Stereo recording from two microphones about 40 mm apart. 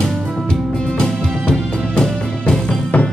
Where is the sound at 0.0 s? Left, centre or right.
Centre.